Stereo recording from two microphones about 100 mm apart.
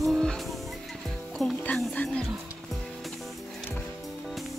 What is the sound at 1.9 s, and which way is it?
Speech, 10° left (ahead or behind).